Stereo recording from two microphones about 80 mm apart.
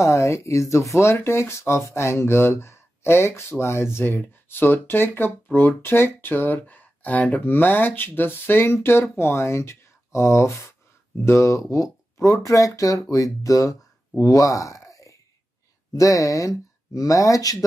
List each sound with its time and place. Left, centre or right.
0.0 s speech: left